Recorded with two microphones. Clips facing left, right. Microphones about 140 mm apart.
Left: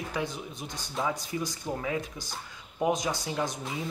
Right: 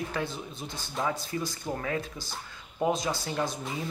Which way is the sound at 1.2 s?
15° left (ahead or behind).